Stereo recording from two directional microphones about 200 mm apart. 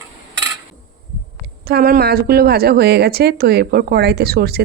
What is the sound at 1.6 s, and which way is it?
A woman's voice, 50° right (ahead or behind).